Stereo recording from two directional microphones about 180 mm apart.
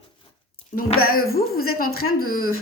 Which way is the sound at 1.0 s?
55° left (ahead or behind).